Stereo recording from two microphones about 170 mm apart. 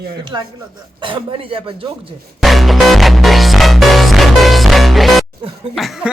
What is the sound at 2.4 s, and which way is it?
Music, centre (ahead or behind).